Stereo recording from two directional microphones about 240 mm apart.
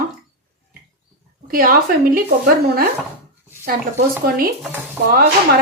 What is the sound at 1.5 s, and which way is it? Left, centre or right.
Speech, right.